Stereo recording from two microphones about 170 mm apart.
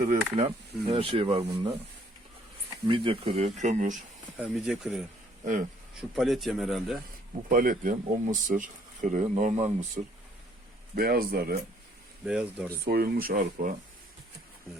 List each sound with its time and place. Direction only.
0.0 s speech: 50° right (ahead or behind)
0.4 s speech: 35° right (ahead or behind)
2.8 s speech: 30° right (ahead or behind); by 3.9 s 45° right (ahead or behind)
4.4 s speech: 5° right (ahead or behind)
6.0 s speech: centre (ahead or behind)
7.5 s speech: 55° right (ahead or behind)
10.9 s speech: 60° right (ahead or behind)
12.2 s speech: 5° right (ahead or behind)
12.8 s speech: 65° right (ahead or behind)